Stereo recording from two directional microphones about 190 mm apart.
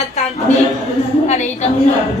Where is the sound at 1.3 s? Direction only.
35° left (ahead or behind).